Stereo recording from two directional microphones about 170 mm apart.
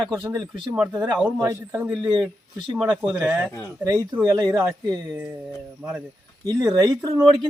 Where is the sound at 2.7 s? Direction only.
5° right (ahead or behind).